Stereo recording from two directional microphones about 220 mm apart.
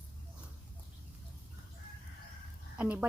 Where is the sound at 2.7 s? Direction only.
5° right (ahead or behind).